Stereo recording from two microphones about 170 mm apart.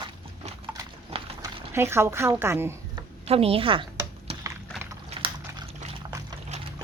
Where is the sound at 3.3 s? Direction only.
35° right (ahead or behind).